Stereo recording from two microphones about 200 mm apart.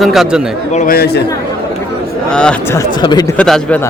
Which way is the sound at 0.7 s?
40° left (ahead or behind).